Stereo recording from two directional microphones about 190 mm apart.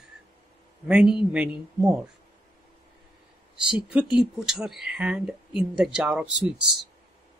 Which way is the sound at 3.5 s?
5° right (ahead or behind).